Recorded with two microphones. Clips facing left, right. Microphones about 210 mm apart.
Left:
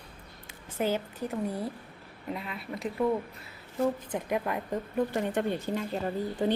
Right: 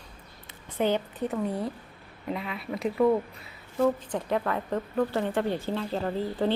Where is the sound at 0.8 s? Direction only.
5° left (ahead or behind).